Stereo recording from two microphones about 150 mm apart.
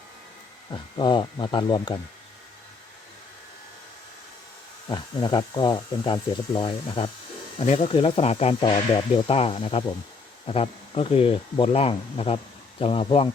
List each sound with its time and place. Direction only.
0.7 s speech: 30° left (ahead or behind)
4.9 s speech: 30° left (ahead or behind)
7.6 s speech: 45° left (ahead or behind)
8.6 s speech: 35° left (ahead or behind)